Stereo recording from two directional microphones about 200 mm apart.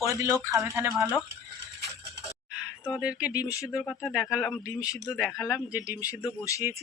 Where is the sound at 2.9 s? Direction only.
5° right (ahead or behind).